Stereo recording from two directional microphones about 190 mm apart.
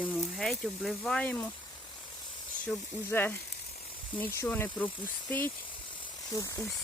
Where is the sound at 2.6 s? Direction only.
10° left (ahead or behind).